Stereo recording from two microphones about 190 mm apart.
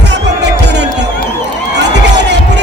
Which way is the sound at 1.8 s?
65° right (ahead or behind).